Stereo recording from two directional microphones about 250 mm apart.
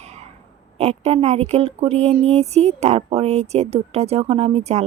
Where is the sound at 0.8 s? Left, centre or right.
Right.